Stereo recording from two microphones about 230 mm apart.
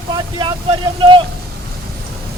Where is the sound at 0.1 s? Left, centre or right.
Centre.